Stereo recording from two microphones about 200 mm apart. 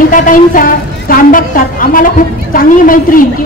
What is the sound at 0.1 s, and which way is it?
A woman's voice, 40° left (ahead or behind).